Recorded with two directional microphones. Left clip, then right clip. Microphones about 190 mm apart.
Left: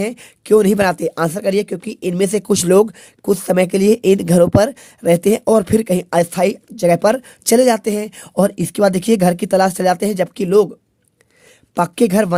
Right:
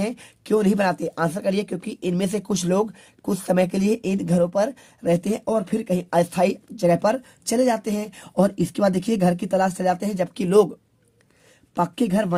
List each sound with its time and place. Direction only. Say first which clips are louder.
0.0 s speech: left 5 dB; 40° left (ahead or behind)
10.4 s speech: left 4 dB; 20° left (ahead or behind)
11.7 s speech: left 8 dB; 50° left (ahead or behind)